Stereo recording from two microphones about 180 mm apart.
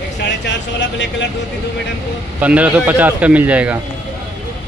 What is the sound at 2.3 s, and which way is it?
Speech, 10° right (ahead or behind).